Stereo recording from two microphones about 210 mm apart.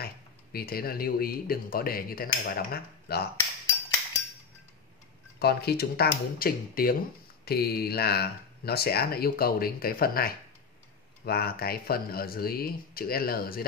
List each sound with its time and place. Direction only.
0.0 s speech: 45° left (ahead or behind)
5.4 s speech: 50° left (ahead or behind)